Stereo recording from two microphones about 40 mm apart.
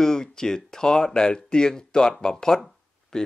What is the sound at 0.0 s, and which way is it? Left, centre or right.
Speech, centre.